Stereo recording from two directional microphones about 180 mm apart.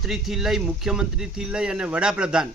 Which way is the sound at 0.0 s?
Centre (ahead or behind).